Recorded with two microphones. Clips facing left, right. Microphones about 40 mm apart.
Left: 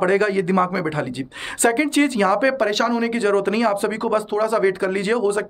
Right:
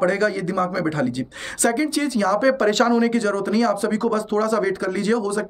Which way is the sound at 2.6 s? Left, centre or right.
Centre.